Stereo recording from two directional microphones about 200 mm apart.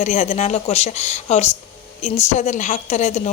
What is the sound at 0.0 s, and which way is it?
A woman's voice, 35° left (ahead or behind).